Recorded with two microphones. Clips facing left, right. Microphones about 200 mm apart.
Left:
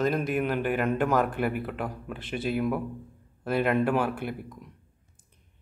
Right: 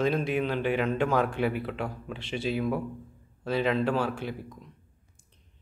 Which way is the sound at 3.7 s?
10° left (ahead or behind).